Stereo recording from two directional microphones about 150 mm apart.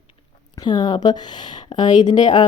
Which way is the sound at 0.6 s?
30° left (ahead or behind).